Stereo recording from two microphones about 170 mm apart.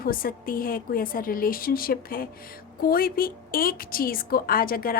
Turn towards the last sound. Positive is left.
turn(degrees=60)  # may be behind; listen again after turning